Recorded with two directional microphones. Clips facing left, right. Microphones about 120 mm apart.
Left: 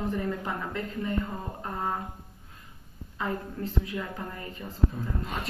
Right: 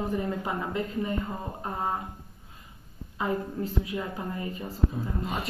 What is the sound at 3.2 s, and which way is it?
A woman's voice, 10° right (ahead or behind).